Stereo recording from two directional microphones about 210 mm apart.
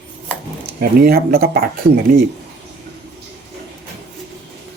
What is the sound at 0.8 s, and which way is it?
Speech, 45° right (ahead or behind).